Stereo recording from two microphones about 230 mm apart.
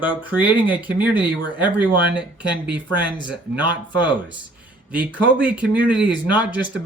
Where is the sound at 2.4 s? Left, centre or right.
Centre.